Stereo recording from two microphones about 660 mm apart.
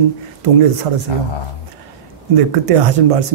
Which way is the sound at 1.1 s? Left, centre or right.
Left.